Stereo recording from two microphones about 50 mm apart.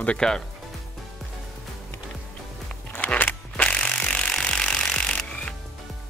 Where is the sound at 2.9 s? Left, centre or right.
Left.